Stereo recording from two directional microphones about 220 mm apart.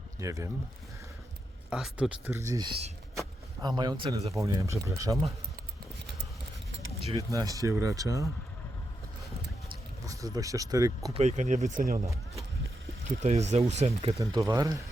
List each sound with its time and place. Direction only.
0.2 s speech: 15° right (ahead or behind)
1.7 s speech: 5° right (ahead or behind)
7.1 s speech: 15° right (ahead or behind)
10.1 s speech: 15° right (ahead or behind)
11.1 s speech: 30° right (ahead or behind)
13.1 s speech: 30° right (ahead or behind)
14.2 s speech: 15° right (ahead or behind)